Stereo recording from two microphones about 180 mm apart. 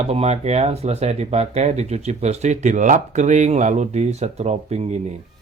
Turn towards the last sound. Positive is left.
turn(degrees=-40)  # may be behind; listen again after turning